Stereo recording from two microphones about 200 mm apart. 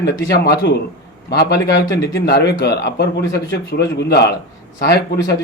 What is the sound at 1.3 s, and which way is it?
Speech, 55° left (ahead or behind).